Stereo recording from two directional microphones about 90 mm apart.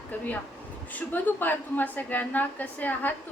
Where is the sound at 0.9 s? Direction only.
20° left (ahead or behind).